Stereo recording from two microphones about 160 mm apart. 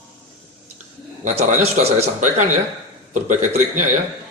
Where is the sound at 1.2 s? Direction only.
50° right (ahead or behind).